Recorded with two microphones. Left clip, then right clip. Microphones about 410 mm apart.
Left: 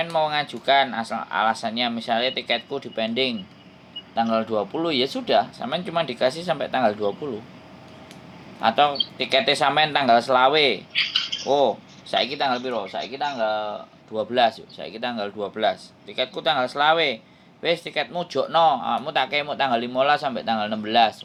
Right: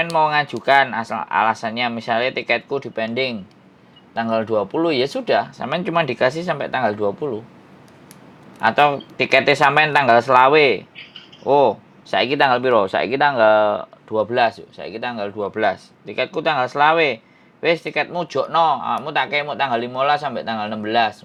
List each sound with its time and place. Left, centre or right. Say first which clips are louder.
0.0 s speech: right 5 dB; right
8.6 s speech: right 4 dB; right
14.1 s speech: right 3 dB; right